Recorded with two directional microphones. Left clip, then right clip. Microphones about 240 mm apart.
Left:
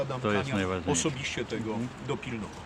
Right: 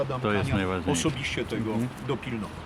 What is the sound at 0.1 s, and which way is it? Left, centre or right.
Speech, centre.